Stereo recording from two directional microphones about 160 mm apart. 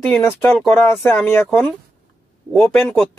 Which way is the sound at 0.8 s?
15° left (ahead or behind).